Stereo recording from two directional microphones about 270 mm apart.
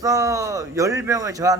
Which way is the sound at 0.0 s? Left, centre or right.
Centre.